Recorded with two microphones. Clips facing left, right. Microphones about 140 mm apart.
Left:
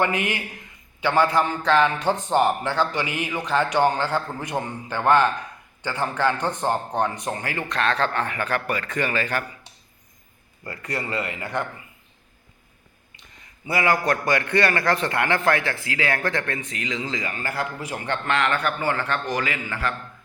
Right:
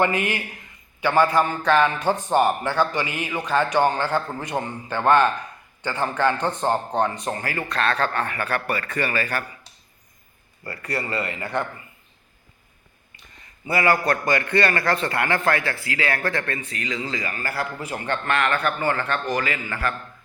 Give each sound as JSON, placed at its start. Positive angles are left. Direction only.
{"t": 0.0, "sound": "a man's voice", "side_deg": 15}
{"t": 10.6, "sound": "a man's voice", "side_deg": 15}
{"t": 13.7, "sound": "a man's voice", "side_deg": 15}